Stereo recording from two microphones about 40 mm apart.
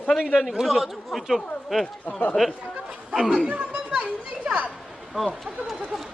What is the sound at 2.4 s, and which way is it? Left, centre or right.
Speech, centre.